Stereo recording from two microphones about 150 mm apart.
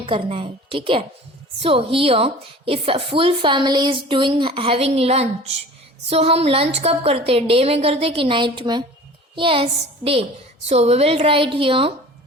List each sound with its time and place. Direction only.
0.0 s speech: 35° right (ahead or behind)